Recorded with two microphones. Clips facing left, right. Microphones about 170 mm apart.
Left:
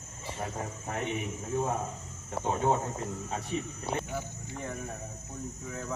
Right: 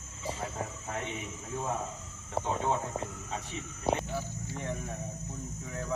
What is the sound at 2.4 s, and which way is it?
Speech, 40° left (ahead or behind).